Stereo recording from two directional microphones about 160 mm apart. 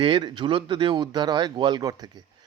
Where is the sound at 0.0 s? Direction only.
30° right (ahead or behind).